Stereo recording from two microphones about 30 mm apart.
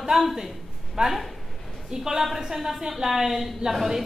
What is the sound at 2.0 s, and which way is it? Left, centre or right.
A woman's voice, centre.